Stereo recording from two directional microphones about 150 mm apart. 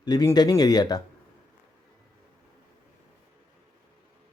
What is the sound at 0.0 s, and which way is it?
Speech, 25° left (ahead or behind).